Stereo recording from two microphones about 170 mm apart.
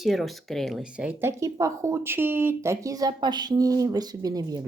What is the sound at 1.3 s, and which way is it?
A woman's voice, 20° right (ahead or behind).